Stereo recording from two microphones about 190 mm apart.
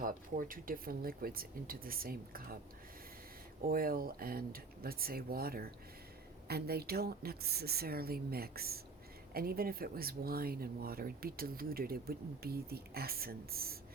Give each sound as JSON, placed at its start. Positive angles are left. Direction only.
{"t": 0.0, "sound": "speech", "side_deg": -45}
{"t": 3.6, "sound": "a woman's voice", "side_deg": -50}